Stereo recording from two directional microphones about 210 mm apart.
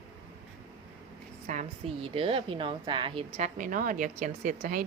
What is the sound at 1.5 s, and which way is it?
A woman's voice, 30° right (ahead or behind).